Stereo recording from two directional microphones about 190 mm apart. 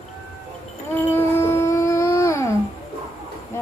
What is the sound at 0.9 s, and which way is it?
Dog, 15° left (ahead or behind).